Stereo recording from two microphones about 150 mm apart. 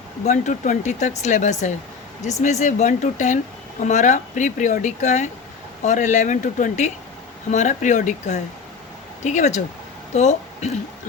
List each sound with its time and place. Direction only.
0.3 s speech: 55° left (ahead or behind)